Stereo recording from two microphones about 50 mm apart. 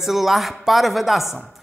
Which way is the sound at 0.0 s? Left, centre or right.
Centre.